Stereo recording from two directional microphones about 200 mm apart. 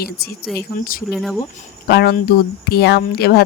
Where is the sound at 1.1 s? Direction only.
Centre (ahead or behind).